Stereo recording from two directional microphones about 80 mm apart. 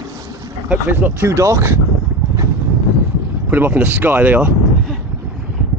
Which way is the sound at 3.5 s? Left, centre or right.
Right.